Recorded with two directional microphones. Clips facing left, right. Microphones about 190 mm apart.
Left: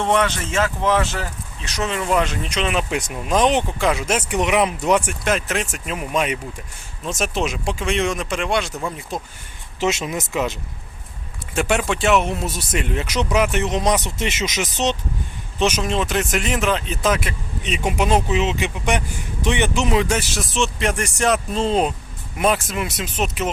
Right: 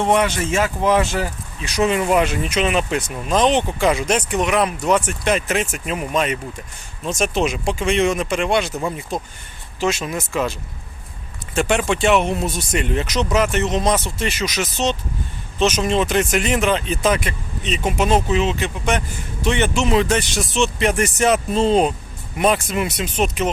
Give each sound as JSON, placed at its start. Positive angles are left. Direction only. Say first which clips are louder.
{"t": 0.0, "sound": "speech", "louder": "right 2 dB", "side_deg": -15}
{"t": 2.9, "sound": "speech", "louder": "right 1 dB", "side_deg": 10}
{"t": 4.4, "sound": "speech", "louder": "left 3 dB", "side_deg": 15}
{"t": 5.2, "sound": "speech", "louder": "right 2 dB", "side_deg": 0}
{"t": 9.8, "sound": "speech", "louder": "even", "side_deg": 20}
{"t": 11.5, "sound": "speech", "louder": "right 2 dB", "side_deg": 5}
{"t": 15.8, "sound": "speech", "louder": "right 3 dB", "side_deg": 0}